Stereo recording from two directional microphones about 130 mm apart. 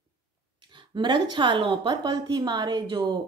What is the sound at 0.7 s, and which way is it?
Speech, 35° right (ahead or behind).